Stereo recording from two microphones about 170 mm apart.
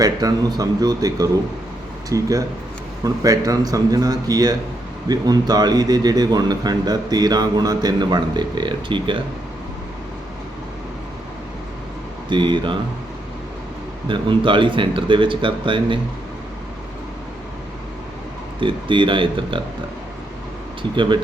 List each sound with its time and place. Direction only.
0.0 s a man's voice: 20° right (ahead or behind)
12.3 s a man's voice: 30° right (ahead or behind)
14.1 s a man's voice: 30° right (ahead or behind)
18.6 s a man's voice: 30° right (ahead or behind)
20.9 s a man's voice: 30° right (ahead or behind)